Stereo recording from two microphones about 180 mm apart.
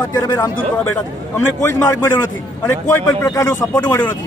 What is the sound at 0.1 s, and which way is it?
A man's voice, 20° left (ahead or behind).